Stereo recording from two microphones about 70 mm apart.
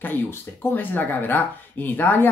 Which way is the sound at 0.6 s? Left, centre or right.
Left.